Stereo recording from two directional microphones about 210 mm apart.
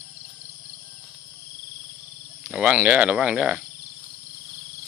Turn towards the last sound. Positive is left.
turn(degrees=-5)  # may be behind; listen again after turning